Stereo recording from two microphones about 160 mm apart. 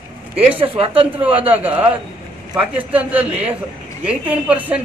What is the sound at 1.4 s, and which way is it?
A man's voice, 10° right (ahead or behind).